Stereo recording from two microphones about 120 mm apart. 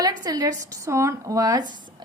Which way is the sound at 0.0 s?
30° right (ahead or behind).